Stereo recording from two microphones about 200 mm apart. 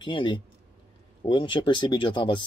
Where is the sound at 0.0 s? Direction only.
25° left (ahead or behind).